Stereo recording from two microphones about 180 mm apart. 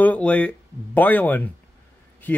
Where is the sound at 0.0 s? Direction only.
10° left (ahead or behind).